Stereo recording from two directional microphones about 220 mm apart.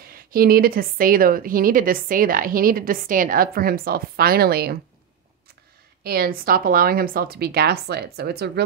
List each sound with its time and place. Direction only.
0.0 s a woman's voice: 40° right (ahead or behind)
6.0 s speech: 40° right (ahead or behind)